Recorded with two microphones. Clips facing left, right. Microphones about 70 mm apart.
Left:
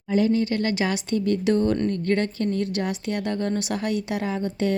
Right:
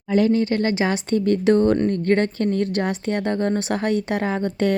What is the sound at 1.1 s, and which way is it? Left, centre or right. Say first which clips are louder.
A woman's voice: right 5 dB; right.